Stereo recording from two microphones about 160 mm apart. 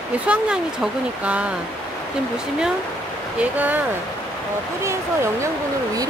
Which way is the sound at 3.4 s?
10° right (ahead or behind).